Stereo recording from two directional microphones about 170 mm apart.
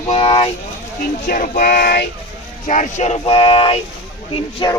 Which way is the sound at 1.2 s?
55° left (ahead or behind).